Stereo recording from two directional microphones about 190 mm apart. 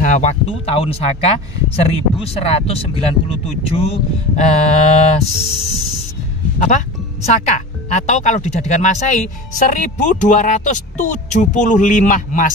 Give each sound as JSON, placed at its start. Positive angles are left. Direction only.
{"t": 0.0, "sound": "speech", "side_deg": 40}
{"t": 7.2, "sound": "speech", "side_deg": 35}